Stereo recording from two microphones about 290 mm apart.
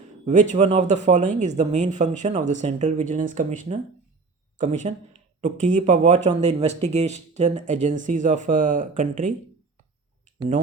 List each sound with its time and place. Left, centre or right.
0.3 s speech: right